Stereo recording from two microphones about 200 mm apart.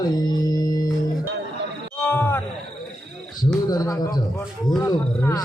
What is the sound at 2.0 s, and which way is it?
Wild animals, 10° left (ahead or behind).